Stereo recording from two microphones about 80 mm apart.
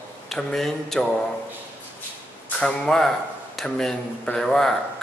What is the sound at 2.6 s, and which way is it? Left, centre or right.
Speech, centre.